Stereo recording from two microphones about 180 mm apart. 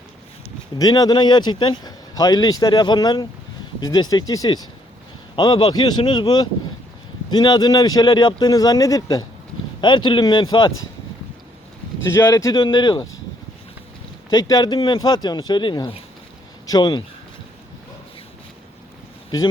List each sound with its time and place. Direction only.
0.8 s speech: 20° left (ahead or behind)
12.0 s speech: 15° left (ahead or behind)
14.3 s speech: 20° left (ahead or behind)